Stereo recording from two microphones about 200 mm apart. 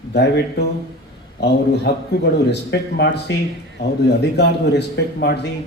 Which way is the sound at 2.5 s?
60° left (ahead or behind).